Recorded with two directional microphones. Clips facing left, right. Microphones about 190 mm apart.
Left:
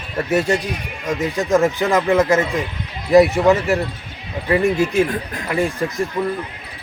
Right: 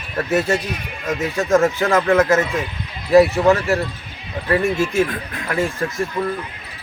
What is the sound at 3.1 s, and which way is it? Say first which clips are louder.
Speech: even; 15° left (ahead or behind).